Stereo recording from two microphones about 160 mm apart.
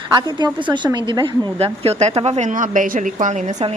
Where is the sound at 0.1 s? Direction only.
30° right (ahead or behind).